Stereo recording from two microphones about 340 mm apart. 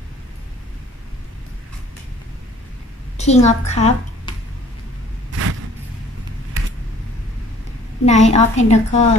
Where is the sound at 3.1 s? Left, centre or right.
Centre.